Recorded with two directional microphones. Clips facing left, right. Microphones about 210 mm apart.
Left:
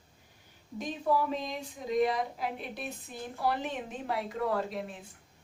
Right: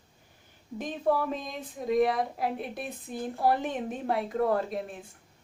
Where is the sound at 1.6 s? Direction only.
55° right (ahead or behind).